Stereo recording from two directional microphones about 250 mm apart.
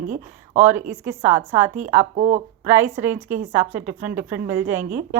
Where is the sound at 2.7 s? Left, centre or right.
Centre.